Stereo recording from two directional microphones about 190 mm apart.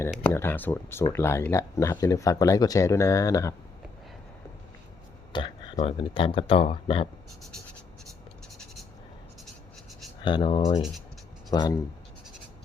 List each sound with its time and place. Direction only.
0.0 s speech: 10° left (ahead or behind)
5.3 s speech: 25° left (ahead or behind)
10.2 s speech: 25° left (ahead or behind)
10.8 s speech: centre (ahead or behind)
11.5 s speech: 20° left (ahead or behind)